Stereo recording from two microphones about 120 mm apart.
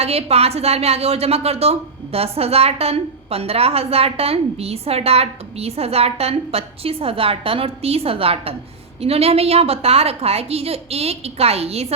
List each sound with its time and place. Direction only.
0.0 s a woman's voice: 60° right (ahead or behind)